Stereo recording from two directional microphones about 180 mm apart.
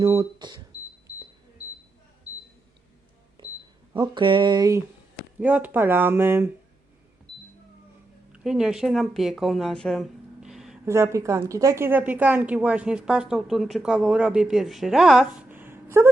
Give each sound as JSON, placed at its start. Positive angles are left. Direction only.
{"t": 0.0, "sound": "speech", "side_deg": -20}
{"t": 3.9, "sound": "a sound", "side_deg": -25}
{"t": 5.4, "sound": "a woman's voice", "side_deg": -10}
{"t": 8.3, "sound": "speech", "side_deg": -5}
{"t": 10.8, "sound": "a woman's voice", "side_deg": -15}